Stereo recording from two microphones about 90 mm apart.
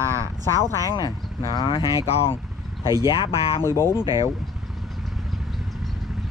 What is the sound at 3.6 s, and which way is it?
Speech, 30° left (ahead or behind).